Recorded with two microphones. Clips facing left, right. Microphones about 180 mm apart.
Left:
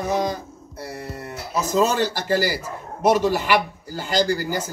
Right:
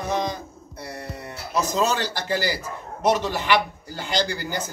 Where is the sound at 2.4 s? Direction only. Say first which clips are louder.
Left 2 dB; 10° left (ahead or behind).